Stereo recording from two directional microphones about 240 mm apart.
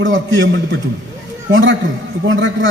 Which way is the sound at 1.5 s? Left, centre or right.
Right.